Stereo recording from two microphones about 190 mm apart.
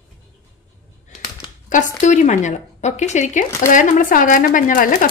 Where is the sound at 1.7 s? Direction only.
40° left (ahead or behind).